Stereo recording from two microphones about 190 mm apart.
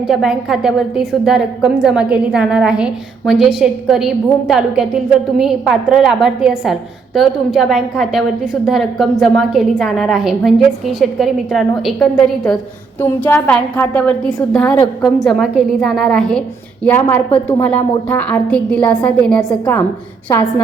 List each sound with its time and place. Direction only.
0.1 s a woman's voice: centre (ahead or behind)
20.3 s a woman's voice: 15° left (ahead or behind)